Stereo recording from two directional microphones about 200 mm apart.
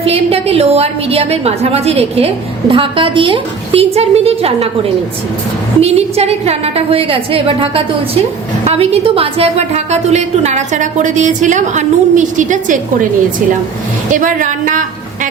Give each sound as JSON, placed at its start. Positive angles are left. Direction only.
{"t": 0.0, "sound": "a woman's voice", "side_deg": -30}
{"t": 14.1, "sound": "a woman's voice", "side_deg": -40}